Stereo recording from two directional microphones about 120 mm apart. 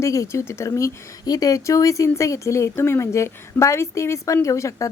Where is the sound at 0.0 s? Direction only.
25° left (ahead or behind).